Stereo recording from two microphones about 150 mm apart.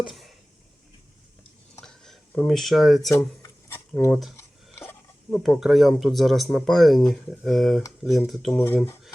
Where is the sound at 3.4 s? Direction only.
15° left (ahead or behind).